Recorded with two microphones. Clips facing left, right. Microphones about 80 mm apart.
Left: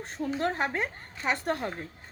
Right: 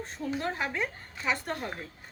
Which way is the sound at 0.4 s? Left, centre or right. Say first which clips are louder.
Left 5 dB; left.